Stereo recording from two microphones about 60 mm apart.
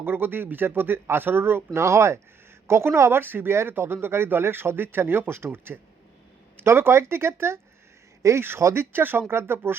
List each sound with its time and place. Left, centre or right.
0.0 s speech: right
1.8 s speech: right